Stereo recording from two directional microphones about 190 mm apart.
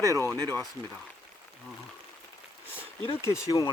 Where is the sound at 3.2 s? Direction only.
15° left (ahead or behind).